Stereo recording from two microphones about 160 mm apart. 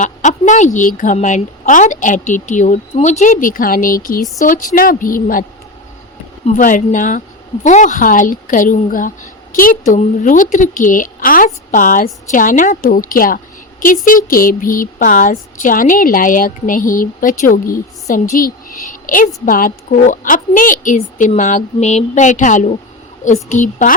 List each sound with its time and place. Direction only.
0.0 s speech: 50° left (ahead or behind)
6.6 s speech: 55° left (ahead or behind)